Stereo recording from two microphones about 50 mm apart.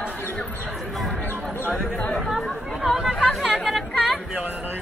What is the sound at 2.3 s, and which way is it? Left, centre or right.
Chatter, centre.